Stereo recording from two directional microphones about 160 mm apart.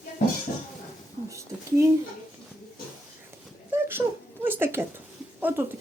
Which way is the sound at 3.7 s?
15° right (ahead or behind).